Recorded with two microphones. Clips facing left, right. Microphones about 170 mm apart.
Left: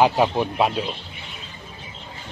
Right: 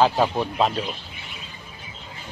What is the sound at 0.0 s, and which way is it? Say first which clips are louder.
Speech: left 1 dB; 10° left (ahead or behind).